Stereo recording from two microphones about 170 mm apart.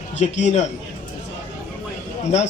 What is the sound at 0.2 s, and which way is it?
Speech, 40° left (ahead or behind).